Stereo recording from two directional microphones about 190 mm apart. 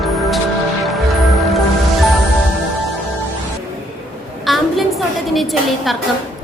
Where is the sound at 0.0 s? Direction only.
Centre (ahead or behind).